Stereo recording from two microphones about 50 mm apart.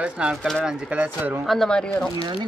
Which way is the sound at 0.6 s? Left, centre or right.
Centre.